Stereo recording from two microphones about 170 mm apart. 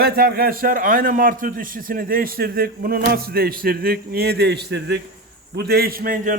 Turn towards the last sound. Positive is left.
turn(degrees=-55)  # may be behind; listen again after turning